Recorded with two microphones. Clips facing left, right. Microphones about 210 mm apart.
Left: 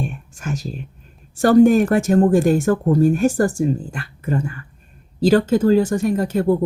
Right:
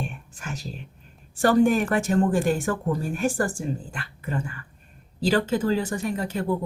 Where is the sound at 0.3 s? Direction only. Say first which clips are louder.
Left 9 dB; 45° left (ahead or behind).